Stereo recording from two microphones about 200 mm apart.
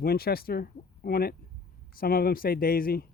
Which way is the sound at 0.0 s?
50° left (ahead or behind).